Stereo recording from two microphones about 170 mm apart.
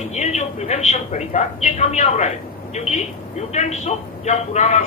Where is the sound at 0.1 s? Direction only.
40° left (ahead or behind).